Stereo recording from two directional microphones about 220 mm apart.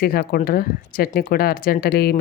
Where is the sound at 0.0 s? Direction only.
45° left (ahead or behind).